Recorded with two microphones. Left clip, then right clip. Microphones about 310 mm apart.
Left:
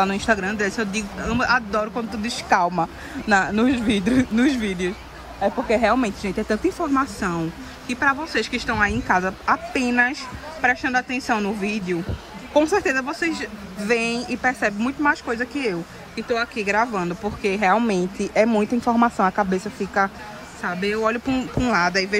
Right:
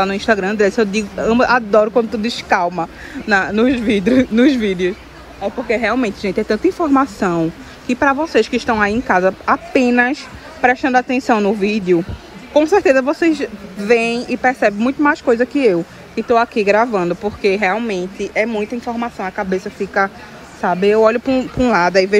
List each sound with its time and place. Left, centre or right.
0.0 s speech: centre